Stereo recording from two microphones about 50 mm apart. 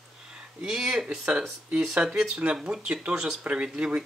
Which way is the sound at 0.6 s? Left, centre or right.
Centre.